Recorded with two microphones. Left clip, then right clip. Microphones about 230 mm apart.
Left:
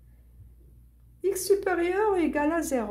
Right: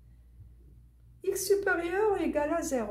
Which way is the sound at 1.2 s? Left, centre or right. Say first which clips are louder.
Left 3 dB; left.